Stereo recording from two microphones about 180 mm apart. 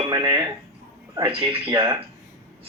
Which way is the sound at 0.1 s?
20° right (ahead or behind).